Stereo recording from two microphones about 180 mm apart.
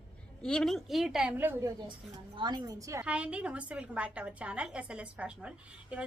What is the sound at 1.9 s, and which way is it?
A woman's voice, 25° right (ahead or behind).